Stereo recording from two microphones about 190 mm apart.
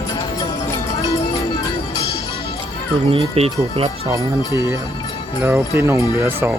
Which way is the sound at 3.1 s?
30° right (ahead or behind).